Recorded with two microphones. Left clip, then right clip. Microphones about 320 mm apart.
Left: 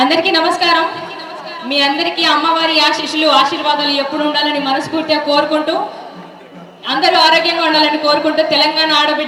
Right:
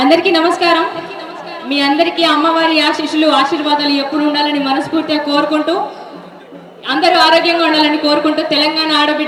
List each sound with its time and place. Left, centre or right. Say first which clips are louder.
0.0 s a man's voice: right 1 dB; left
6.8 s a man's voice: right 1 dB; left